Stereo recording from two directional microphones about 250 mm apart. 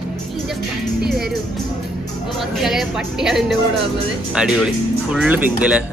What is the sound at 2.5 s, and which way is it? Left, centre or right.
A woman's voice, centre.